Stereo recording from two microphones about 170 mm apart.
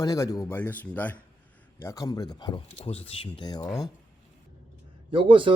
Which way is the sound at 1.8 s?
20° left (ahead or behind).